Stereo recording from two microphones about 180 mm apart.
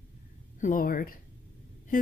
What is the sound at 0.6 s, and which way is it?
Speech, 50° left (ahead or behind).